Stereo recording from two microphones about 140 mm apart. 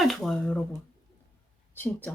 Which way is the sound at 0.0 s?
Centre (ahead or behind).